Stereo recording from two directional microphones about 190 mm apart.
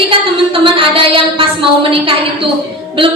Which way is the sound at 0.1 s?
25° right (ahead or behind).